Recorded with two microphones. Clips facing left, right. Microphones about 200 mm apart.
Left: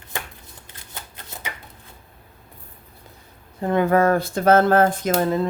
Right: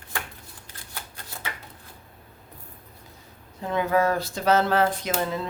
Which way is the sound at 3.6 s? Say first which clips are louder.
Left 5 dB; 55° left (ahead or behind).